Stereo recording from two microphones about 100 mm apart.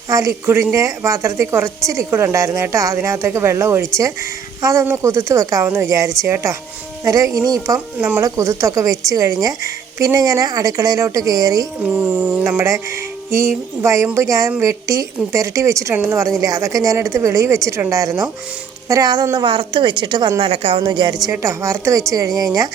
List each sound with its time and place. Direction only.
0.1 s a woman's voice: 35° right (ahead or behind)
7.9 s speech: 10° right (ahead or behind)
8.2 s a woman's voice: 30° right (ahead or behind)
11.8 s speech: 15° right (ahead or behind)
12.4 s a woman's voice: 25° right (ahead or behind); by 20.3 s 50° right (ahead or behind)
20.4 s a woman's voice: 75° right (ahead or behind)
20.8 s a woman's voice: 50° right (ahead or behind)
21.4 s a woman's voice: 30° right (ahead or behind)